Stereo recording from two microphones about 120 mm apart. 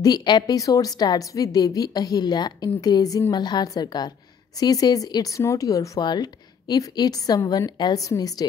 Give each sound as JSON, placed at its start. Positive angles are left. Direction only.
{"t": 0.0, "sound": "a woman's voice", "side_deg": 35}